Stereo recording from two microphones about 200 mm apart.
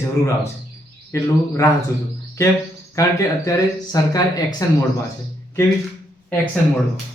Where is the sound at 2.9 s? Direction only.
15° left (ahead or behind).